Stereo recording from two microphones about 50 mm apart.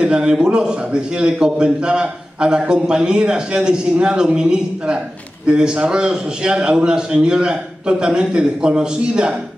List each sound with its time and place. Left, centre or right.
0.0 s a man's voice: centre